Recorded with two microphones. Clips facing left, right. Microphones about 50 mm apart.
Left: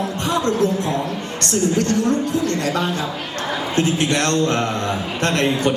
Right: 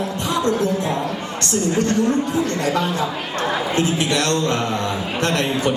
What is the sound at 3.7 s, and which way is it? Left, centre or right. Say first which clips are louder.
Speech: left 4 dB; left.